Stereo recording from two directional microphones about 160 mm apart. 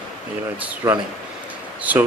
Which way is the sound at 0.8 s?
20° right (ahead or behind).